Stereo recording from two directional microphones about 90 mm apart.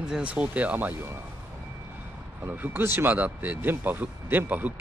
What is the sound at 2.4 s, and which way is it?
Speech, 20° right (ahead or behind).